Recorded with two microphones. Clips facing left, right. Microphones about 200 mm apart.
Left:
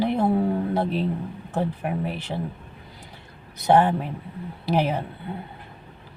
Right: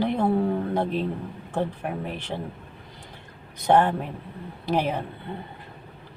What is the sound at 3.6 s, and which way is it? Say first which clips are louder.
Speech: left 1 dB; 5° left (ahead or behind).